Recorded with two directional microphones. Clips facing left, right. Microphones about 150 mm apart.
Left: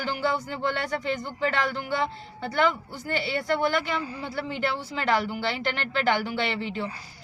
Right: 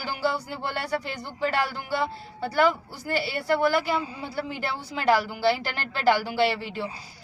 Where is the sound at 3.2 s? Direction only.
35° right (ahead or behind).